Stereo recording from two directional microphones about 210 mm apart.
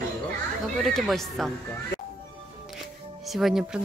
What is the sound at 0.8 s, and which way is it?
Speech, centre (ahead or behind).